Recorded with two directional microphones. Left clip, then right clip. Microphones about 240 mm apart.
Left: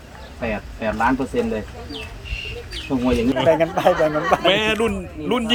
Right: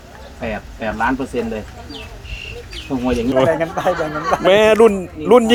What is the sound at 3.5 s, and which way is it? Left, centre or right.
Speech, left.